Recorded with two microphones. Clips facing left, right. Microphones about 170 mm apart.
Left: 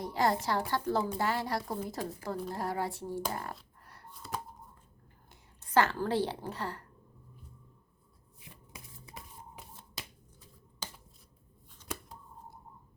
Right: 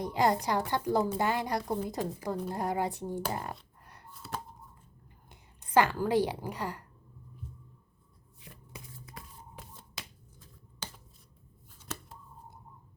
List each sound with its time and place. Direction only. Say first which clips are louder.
0.0 s a woman's voice: right 2 dB; 20° right (ahead or behind)
5.3 s a woman's voice: right 2 dB; 15° right (ahead or behind)
11.9 s a sound: left 1 dB; 15° left (ahead or behind)